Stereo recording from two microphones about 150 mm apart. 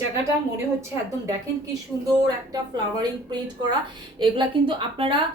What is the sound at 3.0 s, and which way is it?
A woman's voice, 30° right (ahead or behind).